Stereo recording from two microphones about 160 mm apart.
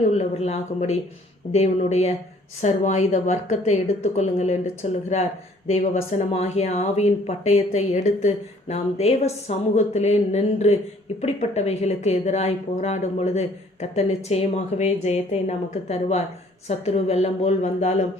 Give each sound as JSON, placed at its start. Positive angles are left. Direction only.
{"t": 0.1, "sound": "speech", "side_deg": 40}